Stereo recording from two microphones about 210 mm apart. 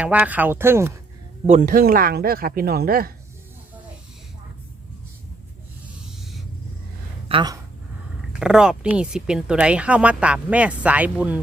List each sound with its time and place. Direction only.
0.0 s speech: 5° right (ahead or behind)
1.5 s speech: 35° right (ahead or behind)
7.3 s speech: 20° right (ahead or behind)
8.3 s speech: 5° right (ahead or behind)